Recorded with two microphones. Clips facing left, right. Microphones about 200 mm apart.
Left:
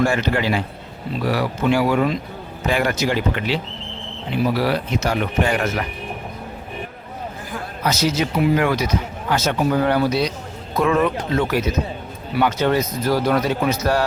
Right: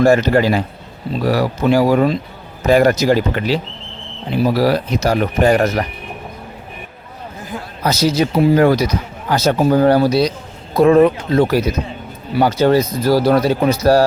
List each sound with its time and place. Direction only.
0.0 s speech: 40° right (ahead or behind)
7.9 s speech: 35° right (ahead or behind)